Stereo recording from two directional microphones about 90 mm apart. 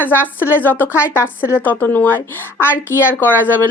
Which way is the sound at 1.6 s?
20° left (ahead or behind).